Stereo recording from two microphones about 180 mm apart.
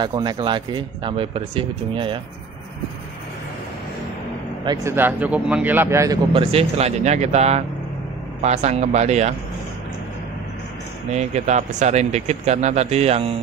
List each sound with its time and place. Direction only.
0.0 s speech: 25° right (ahead or behind)
4.6 s speech: 15° right (ahead or behind)
6.3 s speech: 35° right (ahead or behind)
11.1 s speech: 40° right (ahead or behind)